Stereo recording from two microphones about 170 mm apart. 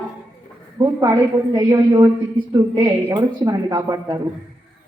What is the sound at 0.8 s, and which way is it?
Speech, 20° right (ahead or behind).